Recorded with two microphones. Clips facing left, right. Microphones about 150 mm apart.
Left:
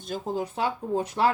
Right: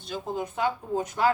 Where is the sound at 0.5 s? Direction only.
30° left (ahead or behind).